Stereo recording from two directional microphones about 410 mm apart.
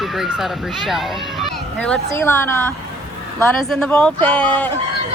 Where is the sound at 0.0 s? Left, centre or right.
Centre.